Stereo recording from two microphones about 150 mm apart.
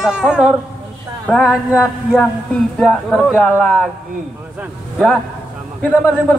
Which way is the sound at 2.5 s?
5° left (ahead or behind).